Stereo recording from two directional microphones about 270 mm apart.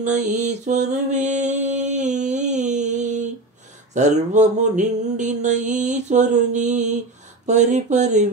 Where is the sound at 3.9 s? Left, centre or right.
Right.